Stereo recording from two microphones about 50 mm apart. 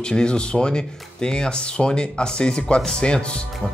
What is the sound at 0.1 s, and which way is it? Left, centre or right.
Speech, centre.